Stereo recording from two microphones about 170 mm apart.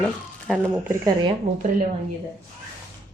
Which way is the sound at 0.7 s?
15° right (ahead or behind).